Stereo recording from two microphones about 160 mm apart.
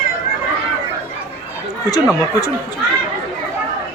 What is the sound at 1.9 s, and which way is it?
Speech, 20° left (ahead or behind).